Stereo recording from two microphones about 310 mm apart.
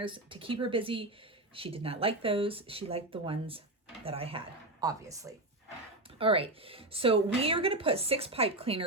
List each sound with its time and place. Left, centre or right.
0.0 s a woman's voice: centre